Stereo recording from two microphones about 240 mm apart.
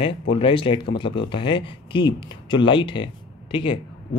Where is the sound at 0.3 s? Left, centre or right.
Left.